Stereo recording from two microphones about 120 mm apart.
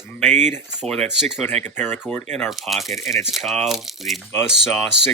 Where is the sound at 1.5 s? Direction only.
70° right (ahead or behind).